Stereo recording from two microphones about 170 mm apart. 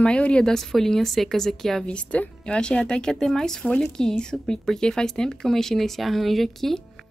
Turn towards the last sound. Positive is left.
turn(degrees=0)  # may be behind; listen again after turning